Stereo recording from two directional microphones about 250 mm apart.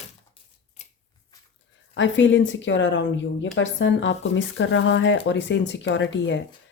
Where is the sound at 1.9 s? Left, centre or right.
Left.